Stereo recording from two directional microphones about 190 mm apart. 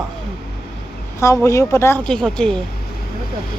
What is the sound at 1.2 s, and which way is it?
Speech, 15° left (ahead or behind).